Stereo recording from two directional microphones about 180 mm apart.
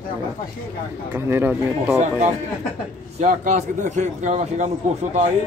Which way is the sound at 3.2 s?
45° right (ahead or behind).